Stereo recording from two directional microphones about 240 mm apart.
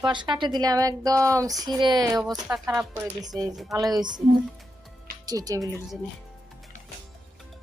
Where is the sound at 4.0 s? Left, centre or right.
Centre.